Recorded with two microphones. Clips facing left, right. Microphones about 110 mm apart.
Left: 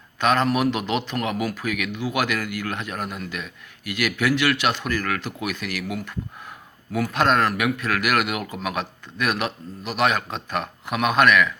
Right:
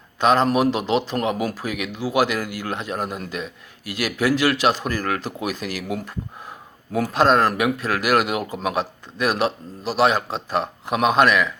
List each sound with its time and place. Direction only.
0.2 s a man's voice: 30° right (ahead or behind)